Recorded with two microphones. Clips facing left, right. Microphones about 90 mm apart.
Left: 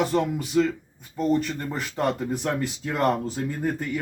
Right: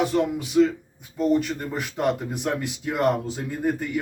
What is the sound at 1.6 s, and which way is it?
Speech, 15° right (ahead or behind).